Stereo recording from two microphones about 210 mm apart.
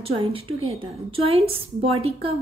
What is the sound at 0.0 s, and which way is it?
A woman's voice, 25° right (ahead or behind).